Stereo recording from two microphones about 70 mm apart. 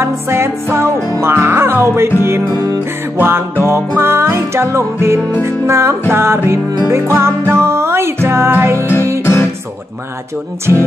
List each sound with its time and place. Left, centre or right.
0.0 s music: right
2.5 s music: right
3.2 s music: right
9.2 s music: left